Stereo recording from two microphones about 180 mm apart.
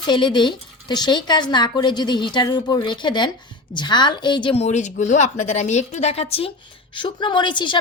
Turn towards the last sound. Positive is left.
turn(degrees=25)  # may be behind; listen again after turning